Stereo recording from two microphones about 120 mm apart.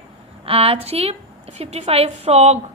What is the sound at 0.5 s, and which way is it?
A woman's voice, 55° right (ahead or behind).